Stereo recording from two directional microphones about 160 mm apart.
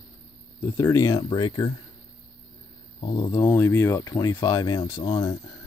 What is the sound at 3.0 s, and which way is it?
Speech, 40° left (ahead or behind).